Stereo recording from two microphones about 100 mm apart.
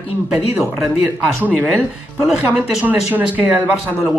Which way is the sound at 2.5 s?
15° right (ahead or behind).